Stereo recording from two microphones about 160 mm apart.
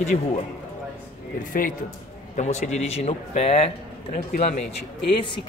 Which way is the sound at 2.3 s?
45° left (ahead or behind).